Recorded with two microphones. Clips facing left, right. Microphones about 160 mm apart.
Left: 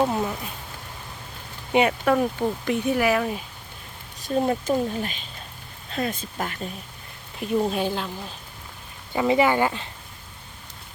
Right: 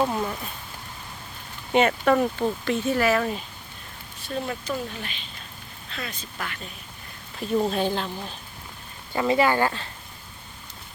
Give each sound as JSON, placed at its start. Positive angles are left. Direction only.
{"t": 0.0, "sound": "speech", "side_deg": 10}
{"t": 1.7, "sound": "speech", "side_deg": 10}
{"t": 4.2, "sound": "speech", "side_deg": 40}
{"t": 7.3, "sound": "speech", "side_deg": 5}
{"t": 9.1, "sound": "speech", "side_deg": 20}